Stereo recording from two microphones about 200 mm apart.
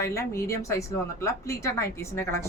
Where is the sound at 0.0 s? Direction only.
15° left (ahead or behind).